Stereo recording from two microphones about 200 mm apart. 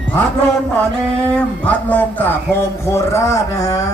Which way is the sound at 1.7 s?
5° left (ahead or behind).